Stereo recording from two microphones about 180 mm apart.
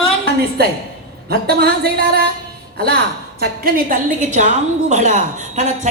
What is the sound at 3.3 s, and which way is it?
A woman's voice, 50° right (ahead or behind).